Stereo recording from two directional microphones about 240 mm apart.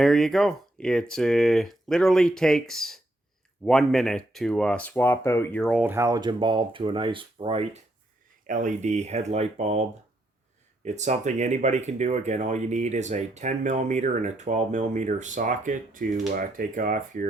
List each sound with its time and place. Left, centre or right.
0.0 s speech: centre; by 9.8 s right
10.8 s speech: right